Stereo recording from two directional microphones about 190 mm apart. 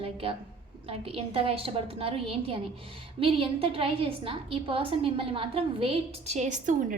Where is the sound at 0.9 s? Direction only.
30° right (ahead or behind).